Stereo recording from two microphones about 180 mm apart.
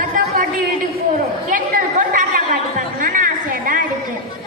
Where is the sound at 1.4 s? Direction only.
45° right (ahead or behind).